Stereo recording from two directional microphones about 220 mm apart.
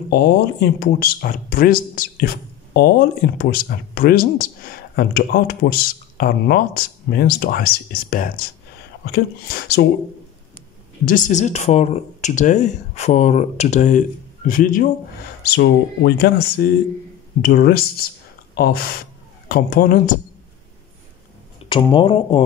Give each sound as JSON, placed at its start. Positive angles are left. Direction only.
{"t": 0.1, "sound": "speech", "side_deg": 45}
{"t": 11.1, "sound": "speech", "side_deg": 35}
{"t": 15.4, "sound": "speech", "side_deg": 50}
{"t": 21.6, "sound": "speech", "side_deg": 20}